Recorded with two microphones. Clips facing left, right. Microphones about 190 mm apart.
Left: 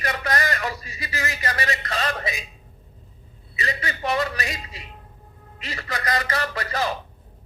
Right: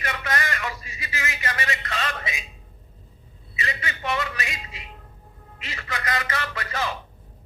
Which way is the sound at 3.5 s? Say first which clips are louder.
Left 3 dB; 35° left (ahead or behind).